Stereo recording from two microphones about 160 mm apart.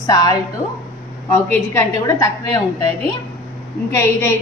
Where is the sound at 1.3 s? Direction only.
15° left (ahead or behind).